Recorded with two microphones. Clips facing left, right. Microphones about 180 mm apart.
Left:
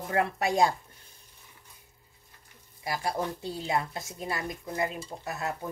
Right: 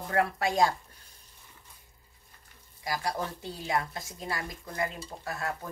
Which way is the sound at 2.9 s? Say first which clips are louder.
Left 2 dB; 25° left (ahead or behind).